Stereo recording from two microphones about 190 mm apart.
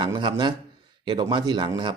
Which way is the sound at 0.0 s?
25° right (ahead or behind).